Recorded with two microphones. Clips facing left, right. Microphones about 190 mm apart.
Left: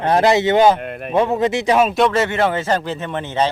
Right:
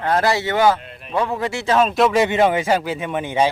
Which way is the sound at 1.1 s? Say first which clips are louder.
Left 5 dB; 20° left (ahead or behind).